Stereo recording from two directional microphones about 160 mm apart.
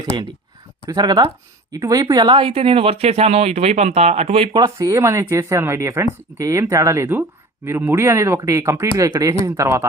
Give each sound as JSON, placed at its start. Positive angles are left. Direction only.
{"t": 0.9, "sound": "speech", "side_deg": -25}
{"t": 4.6, "sound": "speech", "side_deg": -20}